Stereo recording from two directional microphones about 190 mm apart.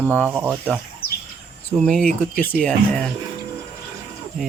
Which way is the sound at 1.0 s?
55° left (ahead or behind).